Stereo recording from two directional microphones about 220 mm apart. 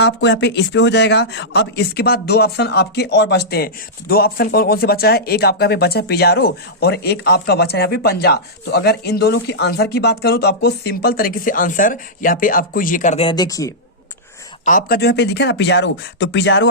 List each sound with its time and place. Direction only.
0.0 s speech: 55° left (ahead or behind); by 13.7 s 15° left (ahead or behind)
14.6 s speech: 35° left (ahead or behind); by 16.6 s 55° left (ahead or behind)